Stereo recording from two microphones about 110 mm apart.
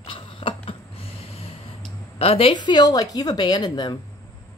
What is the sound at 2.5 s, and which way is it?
A woman's voice, 40° left (ahead or behind).